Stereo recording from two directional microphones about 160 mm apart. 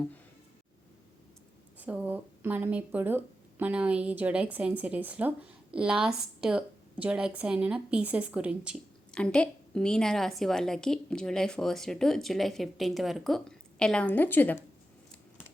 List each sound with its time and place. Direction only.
1.8 s a woman's voice: 10° right (ahead or behind)
9.1 s a woman's voice: 5° left (ahead or behind)